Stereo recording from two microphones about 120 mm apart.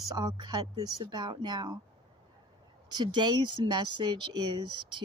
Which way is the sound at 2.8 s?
40° right (ahead or behind).